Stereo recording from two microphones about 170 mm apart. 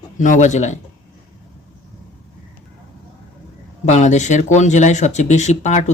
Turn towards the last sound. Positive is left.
turn(degrees=40)  # may be behind; listen again after turning